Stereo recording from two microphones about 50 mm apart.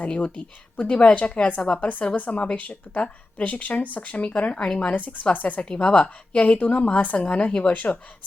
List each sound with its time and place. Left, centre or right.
0.0 s a woman's voice: left
4.9 s speech: left
5.6 s a woman's voice: left
7.7 s speech: left